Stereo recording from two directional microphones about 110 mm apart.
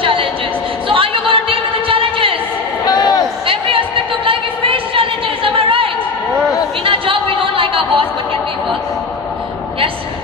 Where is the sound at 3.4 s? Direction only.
55° right (ahead or behind).